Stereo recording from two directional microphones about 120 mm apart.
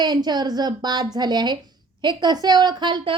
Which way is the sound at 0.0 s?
35° right (ahead or behind).